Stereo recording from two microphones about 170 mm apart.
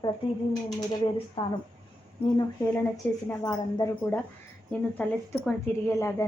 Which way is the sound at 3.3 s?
20° left (ahead or behind).